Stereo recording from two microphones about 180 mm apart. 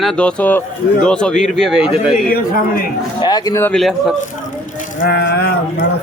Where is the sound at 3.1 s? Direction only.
25° left (ahead or behind).